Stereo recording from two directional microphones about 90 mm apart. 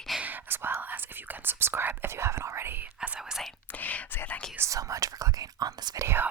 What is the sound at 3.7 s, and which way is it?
Whispering, 20° left (ahead or behind).